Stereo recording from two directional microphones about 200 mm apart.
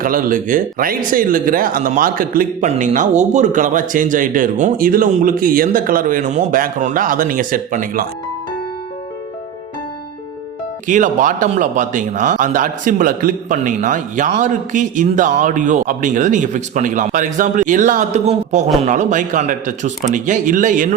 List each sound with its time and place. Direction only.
0.0 s speech: 45° right (ahead or behind)
10.8 s a man's voice: 40° right (ahead or behind)